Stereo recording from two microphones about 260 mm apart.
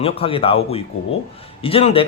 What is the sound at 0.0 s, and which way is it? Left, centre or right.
A man's voice, left.